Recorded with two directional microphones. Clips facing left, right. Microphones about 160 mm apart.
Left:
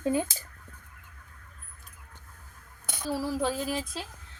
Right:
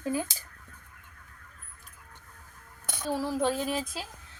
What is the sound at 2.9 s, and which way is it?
Child singing, centre (ahead or behind).